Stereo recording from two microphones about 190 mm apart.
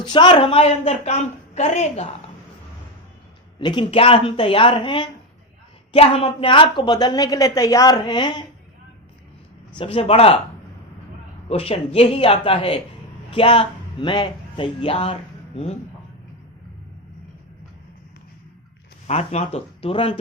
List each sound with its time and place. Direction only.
0.0 s a woman's voice: 25° left (ahead or behind)
3.6 s a woman's voice: 25° left (ahead or behind)
9.7 s a woman's voice: 30° left (ahead or behind)
11.4 s a woman's voice: 30° left (ahead or behind)
19.0 s a woman's voice: 35° left (ahead or behind)